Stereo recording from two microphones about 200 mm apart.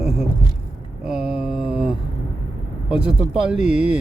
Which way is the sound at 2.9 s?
5° right (ahead or behind).